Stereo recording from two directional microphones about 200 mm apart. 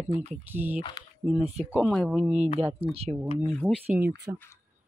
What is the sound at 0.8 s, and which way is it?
Speech, 25° left (ahead or behind).